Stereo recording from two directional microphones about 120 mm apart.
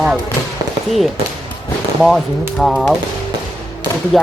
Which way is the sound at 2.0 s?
Centre (ahead or behind).